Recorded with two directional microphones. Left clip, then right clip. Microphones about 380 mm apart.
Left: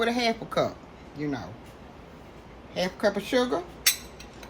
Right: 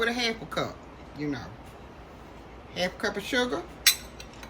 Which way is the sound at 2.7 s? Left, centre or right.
Centre.